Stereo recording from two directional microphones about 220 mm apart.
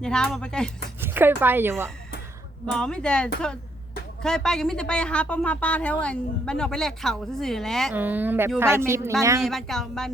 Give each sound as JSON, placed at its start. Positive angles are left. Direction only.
{"t": 0.0, "sound": "a woman's voice", "side_deg": 5}
{"t": 1.0, "sound": "a woman's voice", "side_deg": -10}
{"t": 2.6, "sound": "a woman's voice", "side_deg": 5}
{"t": 9.4, "sound": "a woman's voice", "side_deg": 0}